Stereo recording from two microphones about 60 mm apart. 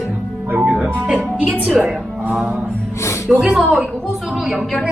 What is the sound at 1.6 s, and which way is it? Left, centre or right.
Music, centre.